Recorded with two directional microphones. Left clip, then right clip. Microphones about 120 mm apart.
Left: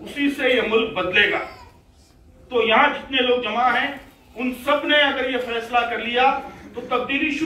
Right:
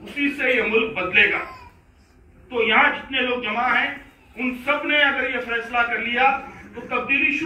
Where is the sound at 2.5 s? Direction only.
35° left (ahead or behind).